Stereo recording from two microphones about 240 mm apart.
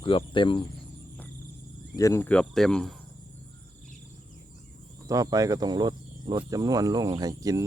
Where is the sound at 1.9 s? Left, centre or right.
Centre.